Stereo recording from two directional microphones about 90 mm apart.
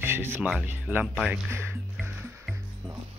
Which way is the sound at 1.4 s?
25° right (ahead or behind).